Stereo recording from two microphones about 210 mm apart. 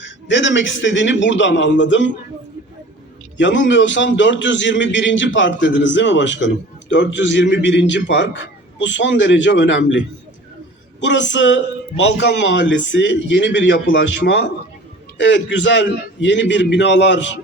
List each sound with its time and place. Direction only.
0.0 s a man's voice: 60° left (ahead or behind)
3.3 s a man's voice: 60° left (ahead or behind)
11.0 s a man's voice: 60° left (ahead or behind)